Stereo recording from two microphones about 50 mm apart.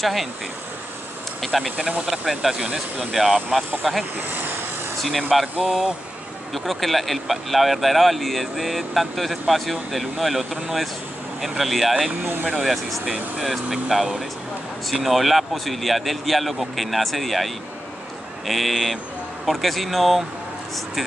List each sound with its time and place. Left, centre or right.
0.0 s speech: centre
1.4 s speech: centre
1.8 s speech: centre
2.0 s speech: centre
2.6 s speech: centre
3.1 s speech: centre
4.3 s vehicle: right
5.0 s speech: centre
5.6 s speech: centre
18.5 s speech: centre